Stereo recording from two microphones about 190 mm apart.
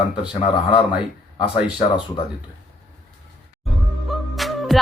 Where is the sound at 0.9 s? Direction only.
Centre (ahead or behind).